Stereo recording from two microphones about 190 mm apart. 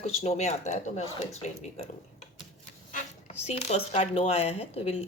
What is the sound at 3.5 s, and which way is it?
Speech, 35° left (ahead or behind).